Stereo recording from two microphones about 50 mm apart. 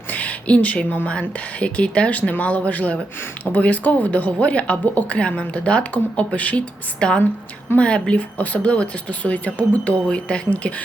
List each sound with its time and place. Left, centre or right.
0.1 s a sound: left
1.0 s speech: left
7.0 s speech: centre
10.1 s speech: left